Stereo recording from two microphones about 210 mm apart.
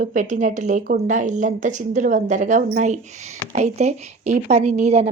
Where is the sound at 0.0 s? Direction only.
35° right (ahead or behind).